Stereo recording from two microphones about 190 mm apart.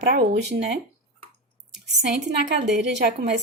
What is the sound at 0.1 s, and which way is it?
Speech, 60° right (ahead or behind).